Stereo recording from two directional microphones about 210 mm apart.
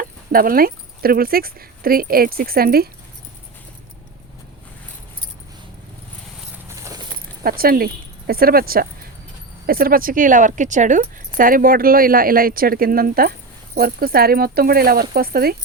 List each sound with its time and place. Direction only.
0.0 s speech: 45° right (ahead or behind)
6.7 s horse: 15° right (ahead or behind)
7.4 s speech: 45° right (ahead or behind)